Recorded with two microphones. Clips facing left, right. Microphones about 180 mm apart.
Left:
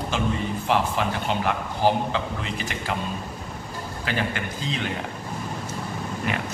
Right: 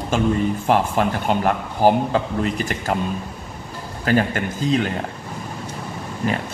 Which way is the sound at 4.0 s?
45° right (ahead or behind).